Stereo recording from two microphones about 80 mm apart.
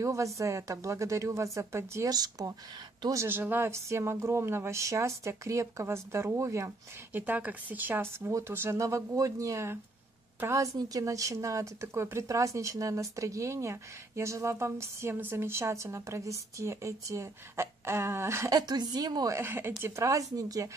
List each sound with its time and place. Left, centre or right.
0.0 s a woman's voice: right
2.0 s a woman's voice: right
3.3 s speech: right
3.7 s a woman's voice: right
7.1 s speech: right
8.3 s a woman's voice: right
18.5 s a woman's voice: right
19.2 s a woman's voice: right